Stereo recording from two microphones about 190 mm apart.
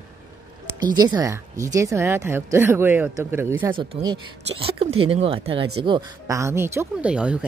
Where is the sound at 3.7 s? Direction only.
25° right (ahead or behind).